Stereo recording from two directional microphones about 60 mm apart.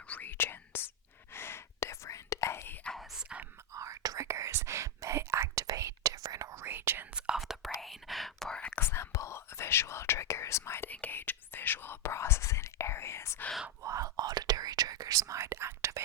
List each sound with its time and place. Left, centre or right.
0.1 s whispering: left
2.9 s whispering: centre
3.7 s whispering: right
4.3 s whispering: right
5.5 s whispering: right
6.7 s whispering: right
7.1 s whispering: centre
7.3 s whispering: centre
8.4 s whispering: centre
8.7 s whispering: left
10.8 s whispering: left
13.8 s whispering: right
15.4 s whispering: right